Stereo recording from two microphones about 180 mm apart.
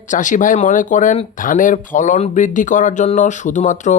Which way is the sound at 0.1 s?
45° left (ahead or behind).